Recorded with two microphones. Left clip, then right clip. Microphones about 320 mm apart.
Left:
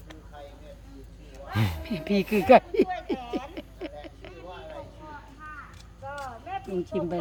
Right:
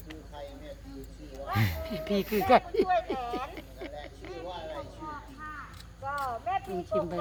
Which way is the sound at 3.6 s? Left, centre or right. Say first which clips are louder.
Left 5 dB; left.